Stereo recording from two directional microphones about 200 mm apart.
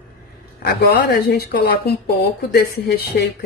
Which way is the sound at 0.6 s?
50° left (ahead or behind).